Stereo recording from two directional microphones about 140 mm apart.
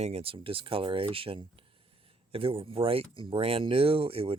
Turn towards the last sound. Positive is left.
turn(degrees=-40)  # may be behind; listen again after turning